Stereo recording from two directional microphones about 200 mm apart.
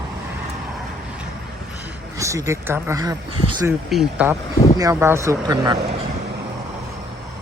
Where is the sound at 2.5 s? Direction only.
10° right (ahead or behind).